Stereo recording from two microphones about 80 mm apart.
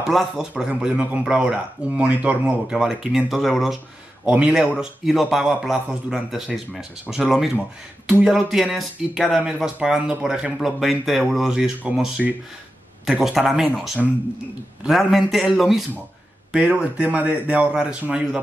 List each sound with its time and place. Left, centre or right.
0.0 s speech: centre
16.5 s speech: centre